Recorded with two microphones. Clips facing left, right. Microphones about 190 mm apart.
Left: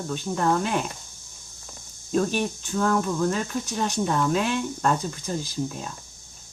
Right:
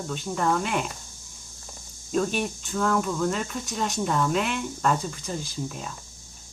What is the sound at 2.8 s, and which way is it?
Speech, centre (ahead or behind).